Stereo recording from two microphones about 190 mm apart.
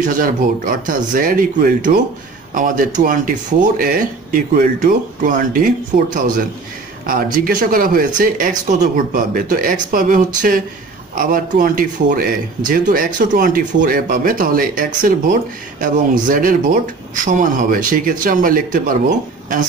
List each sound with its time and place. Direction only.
0.0 s speech: 45° right (ahead or behind)